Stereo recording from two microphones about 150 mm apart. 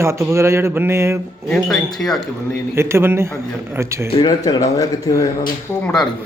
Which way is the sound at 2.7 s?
15° right (ahead or behind).